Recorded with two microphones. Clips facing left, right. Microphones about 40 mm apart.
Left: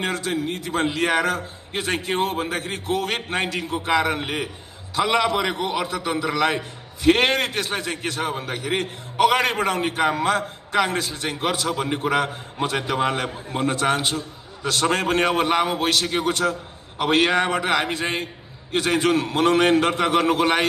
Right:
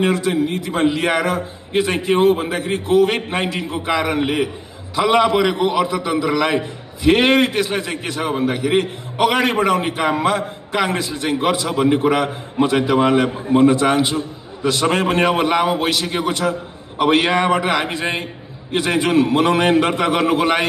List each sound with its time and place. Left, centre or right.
0.0 s a man's voice: right
7.1 s a man's voice: right
11.6 s a man's voice: right
13.5 s a man's voice: right